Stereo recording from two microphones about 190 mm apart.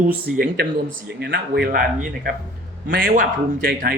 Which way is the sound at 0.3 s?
55° right (ahead or behind).